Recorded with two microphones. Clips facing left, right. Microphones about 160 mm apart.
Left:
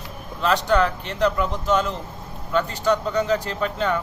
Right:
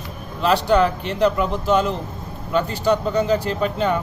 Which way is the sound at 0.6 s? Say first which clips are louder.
Right 3 dB; 10° right (ahead or behind).